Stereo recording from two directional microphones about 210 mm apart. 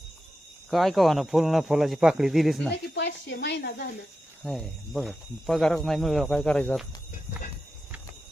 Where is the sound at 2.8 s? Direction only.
55° left (ahead or behind).